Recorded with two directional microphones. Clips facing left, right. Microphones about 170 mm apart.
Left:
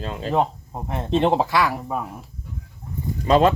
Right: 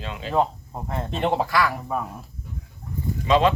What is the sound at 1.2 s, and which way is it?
Speech, 25° left (ahead or behind).